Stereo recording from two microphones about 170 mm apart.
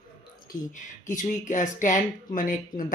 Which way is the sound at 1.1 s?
45° left (ahead or behind).